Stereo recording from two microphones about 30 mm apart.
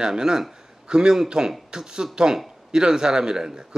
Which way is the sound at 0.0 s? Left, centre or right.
Right.